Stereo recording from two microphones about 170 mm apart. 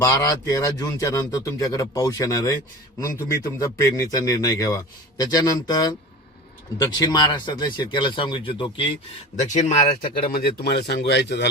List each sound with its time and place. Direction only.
0.0 s a man's voice: 20° left (ahead or behind)
9.3 s speech: 45° left (ahead or behind); by 11.4 s 90° left